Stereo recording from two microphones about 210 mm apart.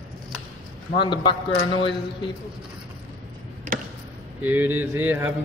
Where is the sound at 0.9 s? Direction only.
20° left (ahead or behind).